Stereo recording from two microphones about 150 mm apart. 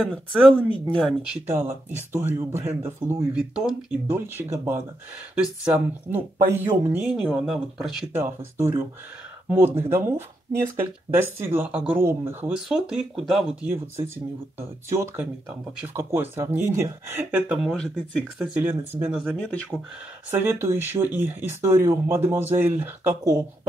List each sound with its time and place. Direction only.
0.1 s speech: centre (ahead or behind)
1.5 s speech: 15° right (ahead or behind)
8.2 s speech: 15° right (ahead or behind)
12.5 s speech: 5° right (ahead or behind)
19.4 s speech: 10° left (ahead or behind)
20.2 s speech: 15° right (ahead or behind)